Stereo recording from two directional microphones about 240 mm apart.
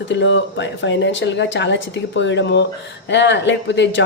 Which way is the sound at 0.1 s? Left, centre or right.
Left.